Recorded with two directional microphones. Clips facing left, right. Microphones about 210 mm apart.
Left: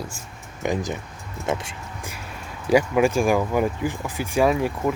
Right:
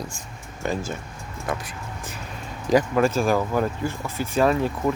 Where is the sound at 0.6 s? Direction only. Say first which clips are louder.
Left 2 dB; 15° left (ahead or behind).